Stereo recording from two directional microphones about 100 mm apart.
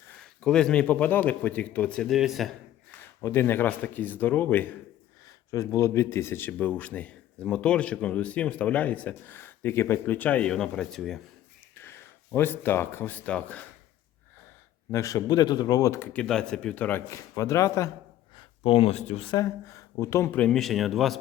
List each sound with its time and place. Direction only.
0.2 s speech: 5° left (ahead or behind)
2.1 s speech: 5° right (ahead or behind)
3.2 s a man's voice: 25° left (ahead or behind)
5.5 s speech: 30° left (ahead or behind); by 11.2 s 5° left (ahead or behind)
11.8 s speech: 20° left (ahead or behind)
14.9 s speech: 35° left (ahead or behind)
16.1 s speech: 5° left (ahead or behind)
17.1 s speech: 30° left (ahead or behind)
18.3 s speech: 65° left (ahead or behind); by 19.3 s 90° left
19.3 s speech: 35° left (ahead or behind)
20.3 s speech: 10° left (ahead or behind)